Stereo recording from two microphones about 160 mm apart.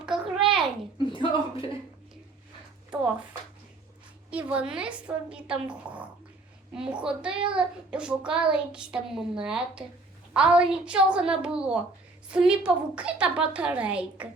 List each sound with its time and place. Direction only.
0.0 s a sound: 5° right (ahead or behind)
0.9 s speech: 30° left (ahead or behind)
4.3 s a woman's voice: 5° right (ahead or behind)